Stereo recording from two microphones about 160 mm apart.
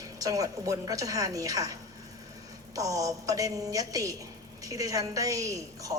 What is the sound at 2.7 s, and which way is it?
A woman's voice, 20° right (ahead or behind).